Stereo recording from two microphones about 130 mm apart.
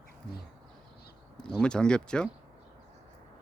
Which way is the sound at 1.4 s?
5° left (ahead or behind).